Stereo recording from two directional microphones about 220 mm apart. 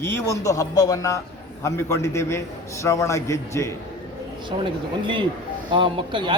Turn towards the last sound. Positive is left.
turn(degrees=-20)  # may be behind; listen again after turning